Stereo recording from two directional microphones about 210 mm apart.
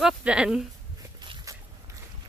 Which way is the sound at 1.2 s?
20° right (ahead or behind).